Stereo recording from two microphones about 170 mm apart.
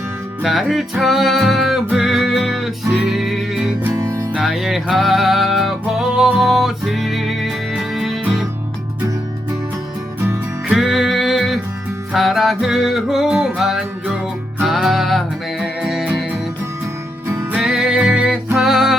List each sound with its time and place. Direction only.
0.4 s music: centre (ahead or behind)
3.9 s music: 20° right (ahead or behind)
4.4 s music: centre (ahead or behind)
10.2 s music: 5° right (ahead or behind)
17.6 s music: 5° right (ahead or behind)